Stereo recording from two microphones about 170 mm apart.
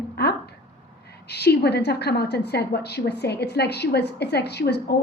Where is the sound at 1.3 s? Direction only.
75° left (ahead or behind).